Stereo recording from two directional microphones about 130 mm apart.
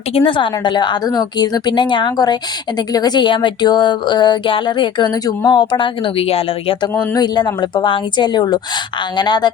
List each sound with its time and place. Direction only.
0.1 s a woman's voice: 45° left (ahead or behind)
7.1 s a woman's voice: 30° left (ahead or behind)